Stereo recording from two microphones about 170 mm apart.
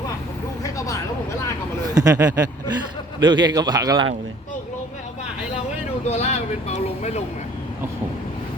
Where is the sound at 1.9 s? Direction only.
20° right (ahead or behind).